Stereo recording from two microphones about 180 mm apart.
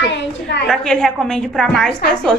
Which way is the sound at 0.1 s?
75° left (ahead or behind).